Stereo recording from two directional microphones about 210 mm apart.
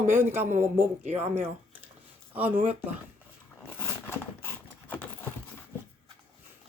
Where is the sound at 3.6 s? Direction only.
10° left (ahead or behind).